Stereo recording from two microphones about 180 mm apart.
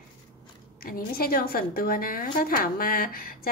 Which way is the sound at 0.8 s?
55° left (ahead or behind).